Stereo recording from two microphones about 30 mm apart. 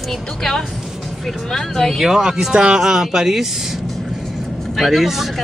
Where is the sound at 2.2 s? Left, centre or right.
Centre.